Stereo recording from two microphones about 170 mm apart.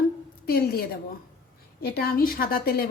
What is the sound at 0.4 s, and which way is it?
A woman's voice, 65° left (ahead or behind).